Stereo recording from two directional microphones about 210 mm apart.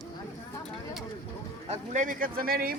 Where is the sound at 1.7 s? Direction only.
40° right (ahead or behind).